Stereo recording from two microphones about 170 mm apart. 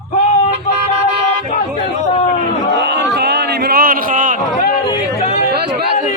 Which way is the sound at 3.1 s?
75° right (ahead or behind).